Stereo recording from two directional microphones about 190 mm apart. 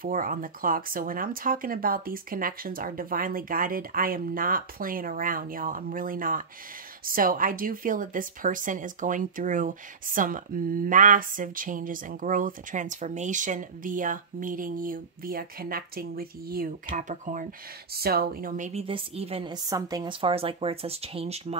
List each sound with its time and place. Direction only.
0.0 s speech: 45° right (ahead or behind)
17.9 s speech: 55° right (ahead or behind)
18.7 s a woman's voice: 30° right (ahead or behind)